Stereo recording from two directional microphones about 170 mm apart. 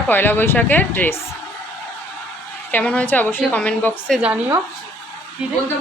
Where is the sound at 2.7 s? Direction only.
10° left (ahead or behind).